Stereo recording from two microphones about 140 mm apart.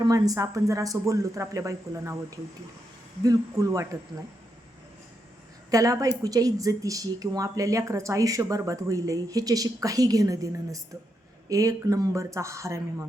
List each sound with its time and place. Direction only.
0.0 s speech: 25° right (ahead or behind)
5.7 s speech: 25° right (ahead or behind)